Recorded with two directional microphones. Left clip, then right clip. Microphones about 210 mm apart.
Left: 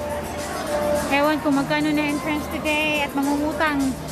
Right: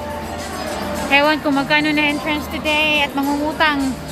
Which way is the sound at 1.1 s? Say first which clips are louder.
Right 8 dB; 5° left (ahead or behind).